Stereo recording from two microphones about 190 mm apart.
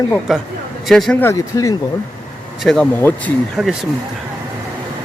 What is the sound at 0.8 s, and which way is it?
Speech, 5° left (ahead or behind).